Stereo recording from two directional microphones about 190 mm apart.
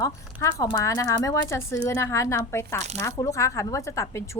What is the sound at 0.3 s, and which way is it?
A woman's voice, 15° left (ahead or behind).